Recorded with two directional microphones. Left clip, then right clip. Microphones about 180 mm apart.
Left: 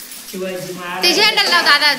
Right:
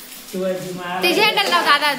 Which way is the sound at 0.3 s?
50° right (ahead or behind).